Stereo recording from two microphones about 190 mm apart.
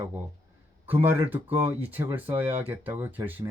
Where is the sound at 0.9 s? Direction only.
10° right (ahead or behind).